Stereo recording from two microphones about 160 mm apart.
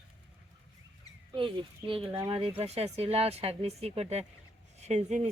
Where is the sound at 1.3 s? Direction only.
30° right (ahead or behind); by 5.3 s 45° right (ahead or behind).